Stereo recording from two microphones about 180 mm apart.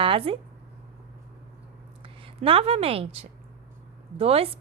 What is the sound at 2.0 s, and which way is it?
A woman's voice, 30° right (ahead or behind).